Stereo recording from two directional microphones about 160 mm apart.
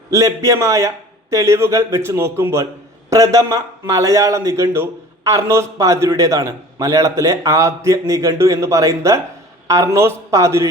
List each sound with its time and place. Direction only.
0.1 s a man's voice: 20° right (ahead or behind)